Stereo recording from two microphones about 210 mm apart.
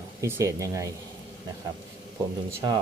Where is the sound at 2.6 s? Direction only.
20° right (ahead or behind).